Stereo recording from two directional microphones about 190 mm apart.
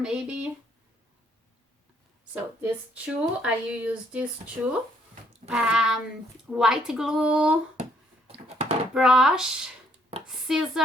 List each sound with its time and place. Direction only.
0.0 s speech: 5° right (ahead or behind)
2.3 s speech: 5° right (ahead or behind)
8.3 s a sound: 30° right (ahead or behind)
9.0 s speech: 5° right (ahead or behind)
10.1 s a sound: 30° right (ahead or behind)
10.5 s speech: 5° right (ahead or behind)